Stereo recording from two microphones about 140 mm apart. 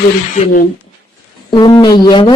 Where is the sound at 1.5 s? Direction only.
30° left (ahead or behind).